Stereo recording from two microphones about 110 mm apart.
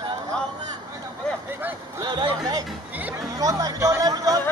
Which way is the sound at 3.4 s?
30° right (ahead or behind).